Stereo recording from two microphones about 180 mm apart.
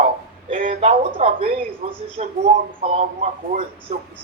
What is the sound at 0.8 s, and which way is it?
Speech, 35° right (ahead or behind).